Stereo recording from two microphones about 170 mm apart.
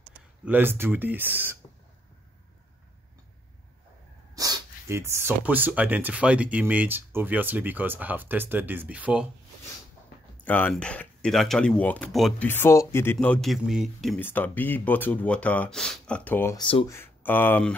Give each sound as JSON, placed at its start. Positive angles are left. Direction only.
{"t": 0.5, "sound": "speech", "side_deg": -10}
{"t": 4.4, "sound": "speech", "side_deg": -20}
{"t": 10.4, "sound": "speech", "side_deg": 10}
{"t": 12.4, "sound": "speech", "side_deg": 15}
{"t": 14.2, "sound": "speech", "side_deg": 10}
{"t": 16.5, "sound": "speech", "side_deg": 30}
{"t": 16.8, "sound": "speech", "side_deg": 15}